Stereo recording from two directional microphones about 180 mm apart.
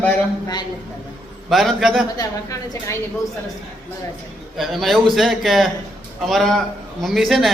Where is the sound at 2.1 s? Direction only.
20° left (ahead or behind).